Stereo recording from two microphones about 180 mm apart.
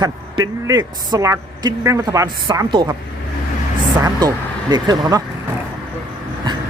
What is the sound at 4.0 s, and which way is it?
Speech, 20° right (ahead or behind).